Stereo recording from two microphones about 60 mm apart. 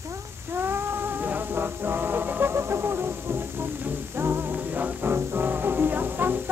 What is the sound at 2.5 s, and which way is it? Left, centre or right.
Music, right.